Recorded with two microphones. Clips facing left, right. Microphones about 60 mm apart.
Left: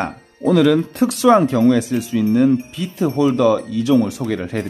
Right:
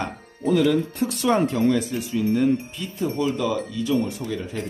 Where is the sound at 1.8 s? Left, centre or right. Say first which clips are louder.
Left 6 dB; left.